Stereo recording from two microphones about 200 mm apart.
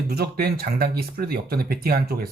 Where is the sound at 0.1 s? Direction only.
50° right (ahead or behind).